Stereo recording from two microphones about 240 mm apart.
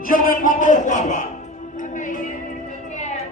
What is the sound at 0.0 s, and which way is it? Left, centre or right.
Music, left.